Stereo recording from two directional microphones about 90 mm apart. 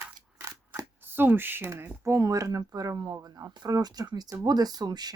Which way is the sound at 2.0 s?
35° right (ahead or behind).